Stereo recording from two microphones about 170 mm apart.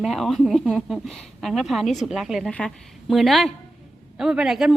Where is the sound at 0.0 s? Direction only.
Centre (ahead or behind).